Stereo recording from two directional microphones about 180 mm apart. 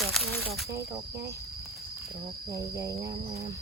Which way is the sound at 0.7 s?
15° right (ahead or behind).